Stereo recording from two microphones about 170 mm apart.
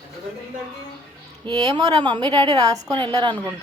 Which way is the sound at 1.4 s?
25° right (ahead or behind).